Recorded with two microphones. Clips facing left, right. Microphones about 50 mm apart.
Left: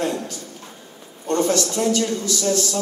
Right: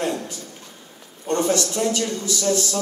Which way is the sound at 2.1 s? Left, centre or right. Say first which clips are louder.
Left 2 dB; centre.